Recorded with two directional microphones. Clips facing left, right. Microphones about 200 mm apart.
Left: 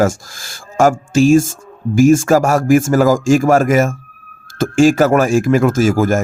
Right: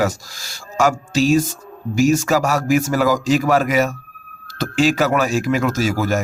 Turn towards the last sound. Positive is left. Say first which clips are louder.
# left 6 dB
turn(degrees=50)  # may be behind; listen again after turning